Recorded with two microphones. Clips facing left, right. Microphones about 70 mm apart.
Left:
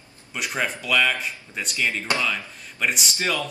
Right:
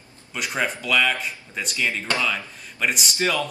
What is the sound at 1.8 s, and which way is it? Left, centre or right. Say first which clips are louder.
Speech: even; left.